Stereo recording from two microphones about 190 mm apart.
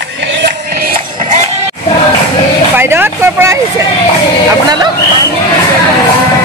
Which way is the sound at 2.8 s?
10° right (ahead or behind).